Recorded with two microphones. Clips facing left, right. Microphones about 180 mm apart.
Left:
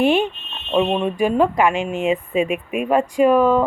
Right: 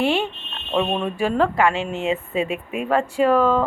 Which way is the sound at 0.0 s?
15° left (ahead or behind).